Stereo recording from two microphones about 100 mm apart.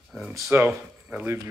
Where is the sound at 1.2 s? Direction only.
20° right (ahead or behind).